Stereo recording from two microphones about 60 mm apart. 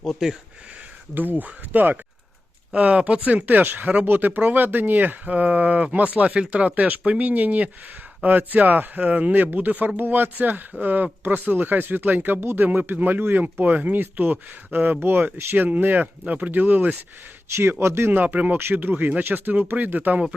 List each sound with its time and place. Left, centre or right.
1.1 s speech: right
2.7 s speech: centre
17.5 s speech: right